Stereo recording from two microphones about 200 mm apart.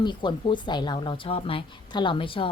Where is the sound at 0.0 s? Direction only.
20° left (ahead or behind).